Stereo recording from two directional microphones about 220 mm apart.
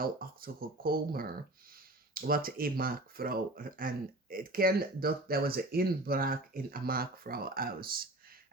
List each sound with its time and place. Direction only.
0.0 s speech: 40° right (ahead or behind)